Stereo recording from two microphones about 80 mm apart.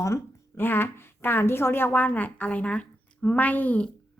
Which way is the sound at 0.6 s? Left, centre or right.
Left.